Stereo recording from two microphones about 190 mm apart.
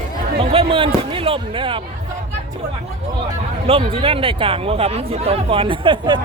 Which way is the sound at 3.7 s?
30° right (ahead or behind).